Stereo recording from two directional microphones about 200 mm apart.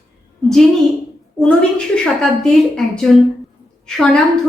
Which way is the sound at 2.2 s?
Centre (ahead or behind).